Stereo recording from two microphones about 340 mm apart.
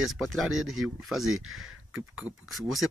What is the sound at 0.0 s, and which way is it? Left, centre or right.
Speech, centre.